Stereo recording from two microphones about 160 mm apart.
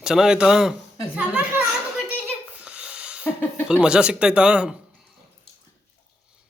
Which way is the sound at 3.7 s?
5° right (ahead or behind).